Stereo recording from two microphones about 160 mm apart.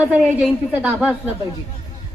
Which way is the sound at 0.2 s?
5° right (ahead or behind).